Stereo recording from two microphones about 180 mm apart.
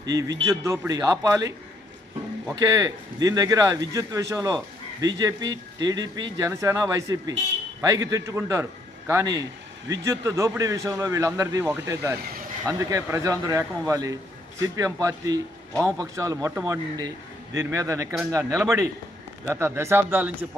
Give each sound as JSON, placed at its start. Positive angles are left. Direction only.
{"t": 0.0, "sound": "a man's voice", "side_deg": -20}